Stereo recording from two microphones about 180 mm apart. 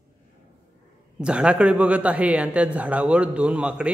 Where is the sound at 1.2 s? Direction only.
5° right (ahead or behind).